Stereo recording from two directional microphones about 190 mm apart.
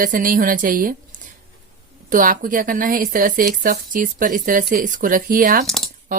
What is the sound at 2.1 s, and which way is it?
A woman's voice, 45° right (ahead or behind).